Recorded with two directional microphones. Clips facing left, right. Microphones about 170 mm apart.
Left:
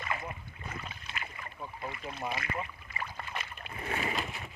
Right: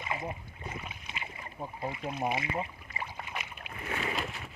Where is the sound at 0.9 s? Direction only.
15° right (ahead or behind).